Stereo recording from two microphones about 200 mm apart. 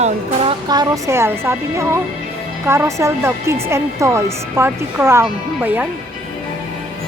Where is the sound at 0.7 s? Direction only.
20° right (ahead or behind).